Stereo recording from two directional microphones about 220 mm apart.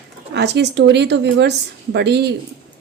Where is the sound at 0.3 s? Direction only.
50° right (ahead or behind).